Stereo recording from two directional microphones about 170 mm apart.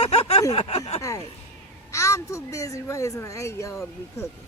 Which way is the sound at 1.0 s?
20° left (ahead or behind).